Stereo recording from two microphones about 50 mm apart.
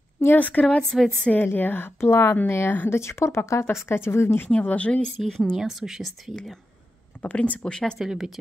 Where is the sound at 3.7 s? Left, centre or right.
Left.